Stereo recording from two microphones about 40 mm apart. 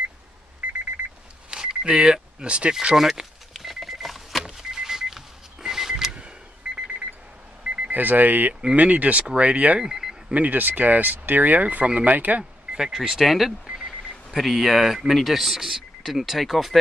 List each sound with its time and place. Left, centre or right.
0.6 s alarm clock: right
1.5 s a sound: centre
2.4 s speech: right
3.0 s power windows: centre
6.7 s alarm clock: centre
7.6 s a sound: right
8.7 s speech: right
9.8 s alarm clock: centre
10.3 s speech: right
12.9 s speech: centre
13.7 s a sound: centre
14.4 s speech: centre